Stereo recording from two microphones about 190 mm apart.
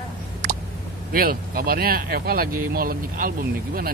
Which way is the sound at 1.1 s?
50° right (ahead or behind).